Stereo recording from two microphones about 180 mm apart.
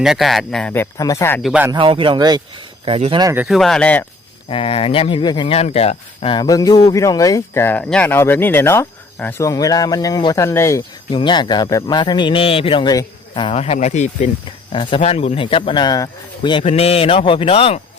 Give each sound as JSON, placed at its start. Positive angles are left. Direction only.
{"t": 0.0, "sound": "speech", "side_deg": 0}
{"t": 1.4, "sound": "speech", "side_deg": 0}
{"t": 1.7, "sound": "speech", "side_deg": -30}
{"t": 3.3, "sound": "speech", "side_deg": 0}
{"t": 4.4, "sound": "speech", "side_deg": 30}
{"t": 11.1, "sound": "speech", "side_deg": 25}
{"t": 14.7, "sound": "speech", "side_deg": 30}